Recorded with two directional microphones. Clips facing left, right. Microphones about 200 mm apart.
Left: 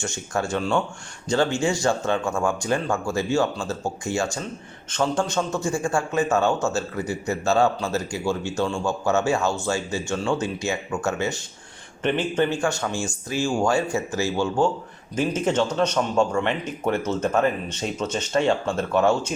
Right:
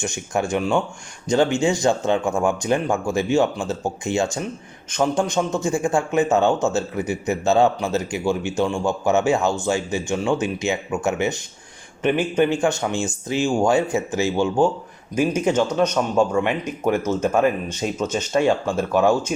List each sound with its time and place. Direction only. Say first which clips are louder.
0.0 s a man's voice: right 3 dB; 15° right (ahead or behind)